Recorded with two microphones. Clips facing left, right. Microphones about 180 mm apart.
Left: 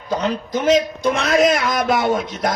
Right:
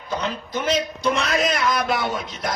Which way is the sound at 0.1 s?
45° left (ahead or behind).